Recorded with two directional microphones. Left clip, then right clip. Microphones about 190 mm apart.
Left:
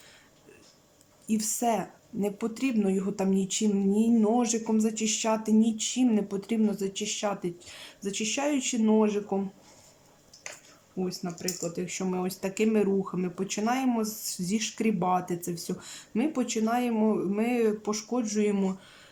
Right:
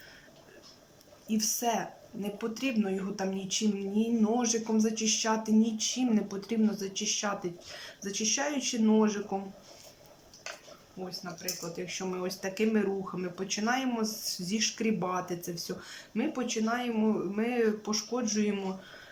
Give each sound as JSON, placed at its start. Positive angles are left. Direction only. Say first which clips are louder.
{"t": 1.3, "sound": "speech", "louder": "left 2 dB", "side_deg": 25}
{"t": 11.0, "sound": "speech", "louder": "left 6 dB", "side_deg": 25}